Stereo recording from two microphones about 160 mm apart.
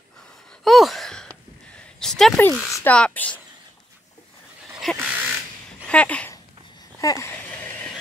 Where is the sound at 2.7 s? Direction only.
10° left (ahead or behind).